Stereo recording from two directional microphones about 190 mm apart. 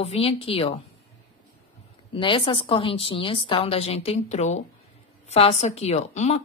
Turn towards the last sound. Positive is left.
turn(degrees=35)  # may be behind; listen again after turning